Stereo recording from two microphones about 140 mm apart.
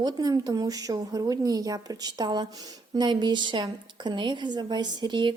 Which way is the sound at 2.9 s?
30° right (ahead or behind).